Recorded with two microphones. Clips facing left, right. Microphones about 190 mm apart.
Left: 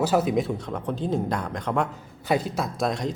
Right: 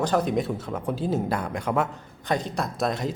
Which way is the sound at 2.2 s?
5° left (ahead or behind).